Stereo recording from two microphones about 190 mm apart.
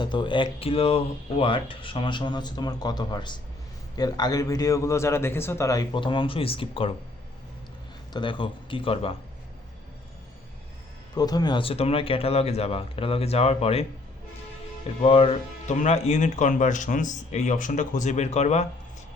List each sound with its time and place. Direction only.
0.0 s speech: 25° left (ahead or behind)
8.1 s speech: 25° left (ahead or behind)
11.1 s speech: 20° left (ahead or behind)
15.0 s speech: 30° left (ahead or behind)